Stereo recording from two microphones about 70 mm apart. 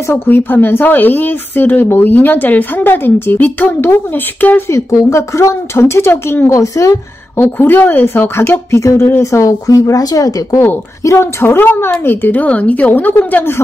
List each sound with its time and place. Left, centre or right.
0.1 s speech: left
4.6 s speech: left
7.3 s speech: left
11.1 s speech: left